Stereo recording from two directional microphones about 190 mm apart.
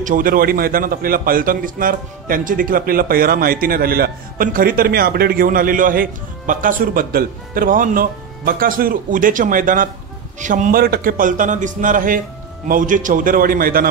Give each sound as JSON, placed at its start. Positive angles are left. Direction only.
{"t": 0.0, "sound": "a man's voice", "side_deg": -45}